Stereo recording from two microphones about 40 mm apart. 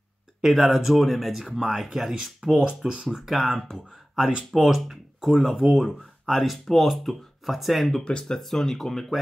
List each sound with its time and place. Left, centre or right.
0.4 s speech: centre
1.6 s speech: centre
1.9 s speech: centre
3.3 s speech: centre
8.0 s speech: left
8.3 s speech: centre